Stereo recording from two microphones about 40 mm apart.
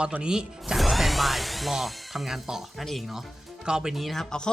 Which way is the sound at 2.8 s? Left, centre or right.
Centre.